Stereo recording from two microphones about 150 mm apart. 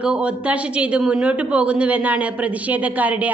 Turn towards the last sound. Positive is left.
turn(degrees=-10)  # may be behind; listen again after turning